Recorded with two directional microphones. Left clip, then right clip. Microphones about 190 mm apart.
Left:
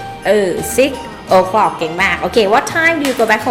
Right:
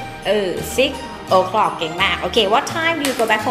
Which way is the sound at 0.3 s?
25° left (ahead or behind).